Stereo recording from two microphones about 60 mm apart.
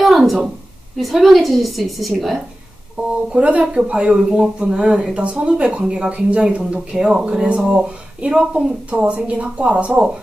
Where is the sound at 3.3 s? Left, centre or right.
Right.